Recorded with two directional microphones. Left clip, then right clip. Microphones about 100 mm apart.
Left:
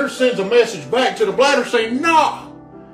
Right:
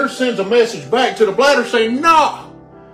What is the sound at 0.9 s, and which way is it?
Speech, 35° right (ahead or behind).